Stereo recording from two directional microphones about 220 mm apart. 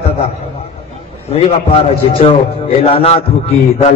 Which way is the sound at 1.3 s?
25° left (ahead or behind).